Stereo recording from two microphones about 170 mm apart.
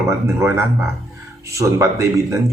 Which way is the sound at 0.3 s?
15° right (ahead or behind).